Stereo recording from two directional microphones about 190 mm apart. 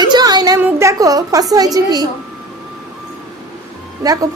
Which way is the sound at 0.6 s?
15° right (ahead or behind).